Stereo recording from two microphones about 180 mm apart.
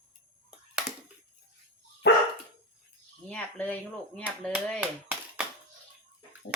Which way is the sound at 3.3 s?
5° left (ahead or behind).